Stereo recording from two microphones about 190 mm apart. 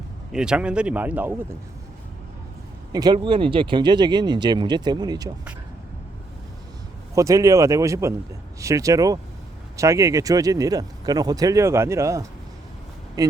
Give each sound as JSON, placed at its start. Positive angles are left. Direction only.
{"t": 0.3, "sound": "speech", "side_deg": -5}
{"t": 2.9, "sound": "speech", "side_deg": -20}
{"t": 7.2, "sound": "speech", "side_deg": -15}